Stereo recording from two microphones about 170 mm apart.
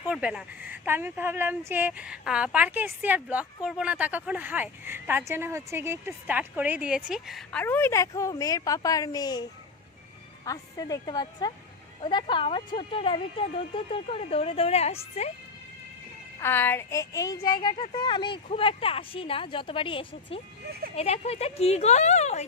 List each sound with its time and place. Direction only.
0.1 s a woman's voice: 5° right (ahead or behind)
7.6 s a child's voice: 15° left (ahead or behind); by 15.3 s 40° left (ahead or behind)
16.4 s a child's voice: 10° left (ahead or behind); by 22.4 s 40° left (ahead or behind)